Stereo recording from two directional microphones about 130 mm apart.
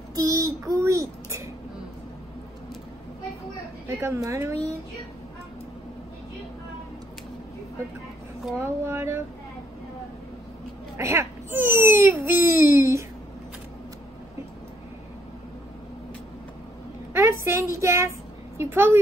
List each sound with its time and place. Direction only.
0.1 s a child's voice: 25° right (ahead or behind)
3.8 s speech: 20° right (ahead or behind)
8.5 s speech: 20° right (ahead or behind)
11.0 s speech: 20° right (ahead or behind)
17.1 s a woman's voice: 20° right (ahead or behind)